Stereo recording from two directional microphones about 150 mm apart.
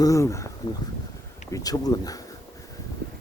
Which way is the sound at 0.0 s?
20° left (ahead or behind).